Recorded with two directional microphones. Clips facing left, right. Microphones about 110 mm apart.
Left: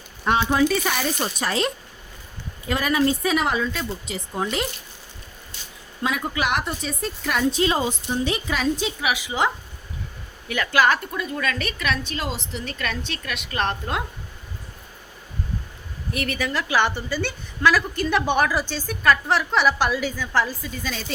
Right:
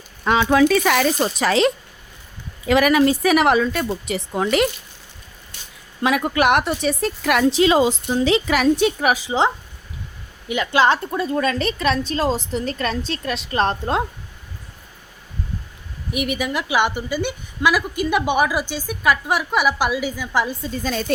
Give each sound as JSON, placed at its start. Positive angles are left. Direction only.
{"t": 0.3, "sound": "speech", "side_deg": -90}
{"t": 2.6, "sound": "speech", "side_deg": -80}
{"t": 6.0, "sound": "speech", "side_deg": -70}
{"t": 9.0, "sound": "a woman's voice", "side_deg": -40}
{"t": 10.5, "sound": "a woman's voice", "side_deg": -20}
{"t": 16.1, "sound": "a woman's voice", "side_deg": -15}
{"t": 20.8, "sound": "speech", "side_deg": -45}